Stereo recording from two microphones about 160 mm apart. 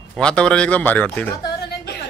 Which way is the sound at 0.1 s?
5° left (ahead or behind).